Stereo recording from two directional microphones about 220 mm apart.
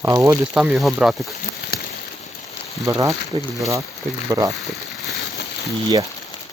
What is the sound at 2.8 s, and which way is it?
Speech, 15° right (ahead or behind).